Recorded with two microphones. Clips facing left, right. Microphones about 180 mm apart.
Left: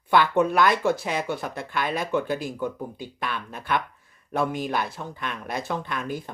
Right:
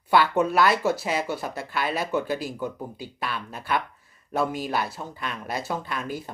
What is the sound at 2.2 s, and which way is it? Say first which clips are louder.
Speech: even; 55° left (ahead or behind).